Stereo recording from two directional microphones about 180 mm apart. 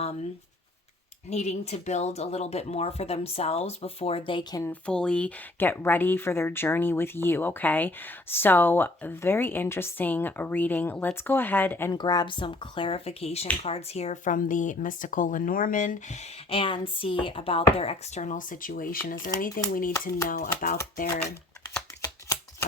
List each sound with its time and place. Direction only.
1.3 s speech: 40° left (ahead or behind)
4.6 s speech: 5° left (ahead or behind)
11.9 s speech: 25° left (ahead or behind); by 21.2 s 50° left (ahead or behind)